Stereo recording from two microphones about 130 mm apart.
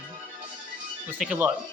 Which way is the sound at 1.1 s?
Centre (ahead or behind).